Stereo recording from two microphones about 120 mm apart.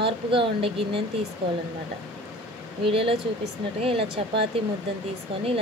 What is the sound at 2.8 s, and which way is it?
A woman's voice, 50° right (ahead or behind).